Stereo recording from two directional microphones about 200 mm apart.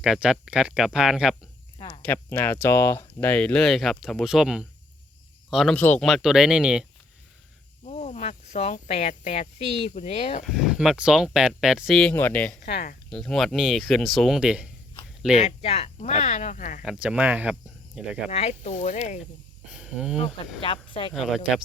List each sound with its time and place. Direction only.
0.0 s speech: 5° right (ahead or behind)
7.9 s speech: 35° left (ahead or behind)
10.4 s speech: centre (ahead or behind)
12.7 s speech: 45° left (ahead or behind)
13.1 s speech: centre (ahead or behind)
15.4 s speech: 30° left (ahead or behind)
16.8 s speech: 5° right (ahead or behind)
18.3 s speech: 30° left (ahead or behind)
19.7 s speech: 5° right (ahead or behind)
20.1 s speech: 30° left (ahead or behind)
21.1 s speech: centre (ahead or behind)